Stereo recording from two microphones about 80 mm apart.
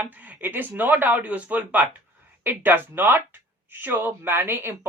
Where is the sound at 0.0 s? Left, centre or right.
Right.